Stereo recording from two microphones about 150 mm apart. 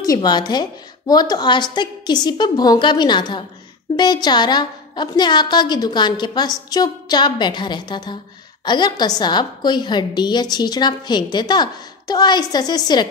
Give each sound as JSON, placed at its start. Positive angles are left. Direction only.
{"t": 0.0, "sound": "a woman's voice", "side_deg": 25}